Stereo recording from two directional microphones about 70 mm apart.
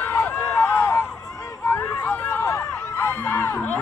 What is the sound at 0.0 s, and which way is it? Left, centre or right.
Run, left.